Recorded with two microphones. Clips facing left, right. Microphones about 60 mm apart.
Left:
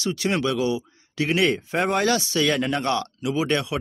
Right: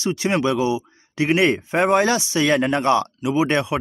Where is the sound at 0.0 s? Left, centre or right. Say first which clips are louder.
Right 3 dB; right.